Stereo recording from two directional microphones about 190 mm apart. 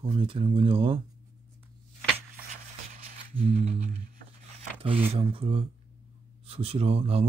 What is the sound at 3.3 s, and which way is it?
Speech, 35° right (ahead or behind).